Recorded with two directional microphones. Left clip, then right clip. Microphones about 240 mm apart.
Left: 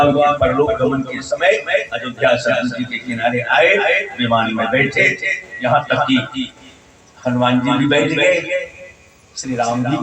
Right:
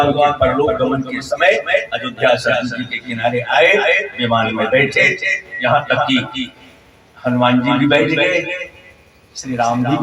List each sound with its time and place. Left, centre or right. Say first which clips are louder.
0.0 s a man's voice: even; right
9.4 s a man's voice: right 2 dB; right